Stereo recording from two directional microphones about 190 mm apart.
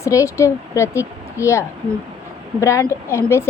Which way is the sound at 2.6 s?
15° left (ahead or behind).